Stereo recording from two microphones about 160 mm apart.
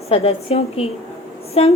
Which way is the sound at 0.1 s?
40° left (ahead or behind).